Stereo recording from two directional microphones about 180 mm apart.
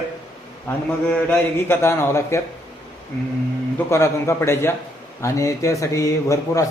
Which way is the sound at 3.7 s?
15° left (ahead or behind).